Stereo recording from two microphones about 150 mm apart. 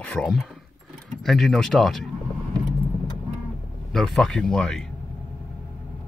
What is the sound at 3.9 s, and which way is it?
Speech, centre (ahead or behind).